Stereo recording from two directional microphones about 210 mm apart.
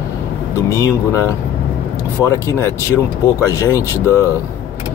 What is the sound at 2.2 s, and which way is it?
Speech, 15° left (ahead or behind).